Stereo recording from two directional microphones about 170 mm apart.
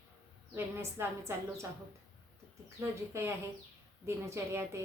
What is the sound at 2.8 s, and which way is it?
Speech, 15° right (ahead or behind).